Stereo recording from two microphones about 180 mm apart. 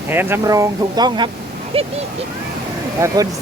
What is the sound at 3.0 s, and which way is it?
Speech, 15° right (ahead or behind).